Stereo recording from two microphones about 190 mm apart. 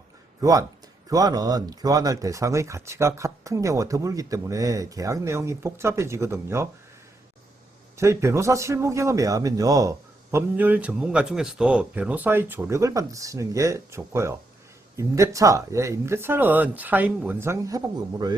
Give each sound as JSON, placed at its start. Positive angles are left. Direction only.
{"t": 1.1, "sound": "speech", "side_deg": -20}
{"t": 7.9, "sound": "speech", "side_deg": -15}